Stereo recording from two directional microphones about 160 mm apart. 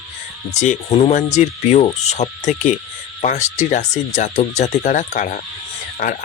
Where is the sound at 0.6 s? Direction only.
45° left (ahead or behind).